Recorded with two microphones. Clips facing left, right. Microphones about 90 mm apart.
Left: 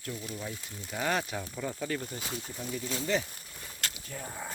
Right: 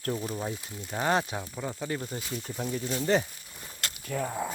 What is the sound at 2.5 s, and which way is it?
Speech, 45° right (ahead or behind).